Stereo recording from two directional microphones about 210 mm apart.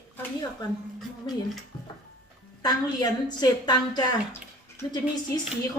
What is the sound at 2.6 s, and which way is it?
A woman's voice, 20° left (ahead or behind).